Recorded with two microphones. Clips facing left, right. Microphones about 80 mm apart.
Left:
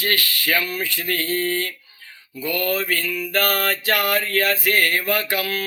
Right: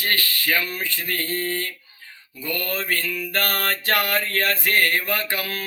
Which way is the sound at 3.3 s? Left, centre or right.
Right.